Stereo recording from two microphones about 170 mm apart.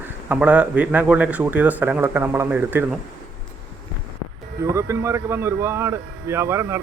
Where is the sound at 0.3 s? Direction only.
10° right (ahead or behind).